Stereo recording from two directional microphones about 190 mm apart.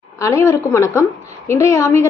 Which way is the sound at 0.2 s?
15° left (ahead or behind).